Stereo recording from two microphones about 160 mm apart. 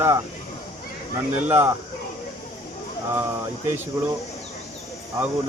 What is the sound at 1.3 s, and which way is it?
Speech, 10° right (ahead or behind).